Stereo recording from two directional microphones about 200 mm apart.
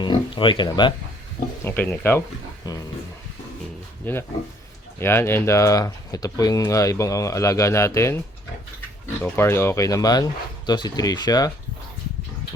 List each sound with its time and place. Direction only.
0.0 s speech: 25° left (ahead or behind)
1.6 s speech: 10° left (ahead or behind)
4.0 s speech: 10° left (ahead or behind)
9.2 s speech: 10° left (ahead or behind)